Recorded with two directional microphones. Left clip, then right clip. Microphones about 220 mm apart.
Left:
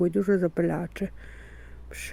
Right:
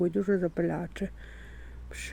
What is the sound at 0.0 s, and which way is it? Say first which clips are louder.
Speech: left 4 dB; 20° left (ahead or behind).